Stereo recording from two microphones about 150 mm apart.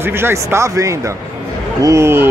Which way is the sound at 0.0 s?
15° right (ahead or behind).